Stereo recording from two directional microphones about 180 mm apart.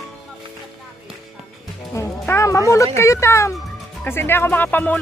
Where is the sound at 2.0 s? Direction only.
15° left (ahead or behind).